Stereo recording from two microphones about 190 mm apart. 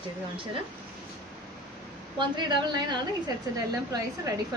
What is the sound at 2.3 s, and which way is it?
A woman's voice, 25° right (ahead or behind).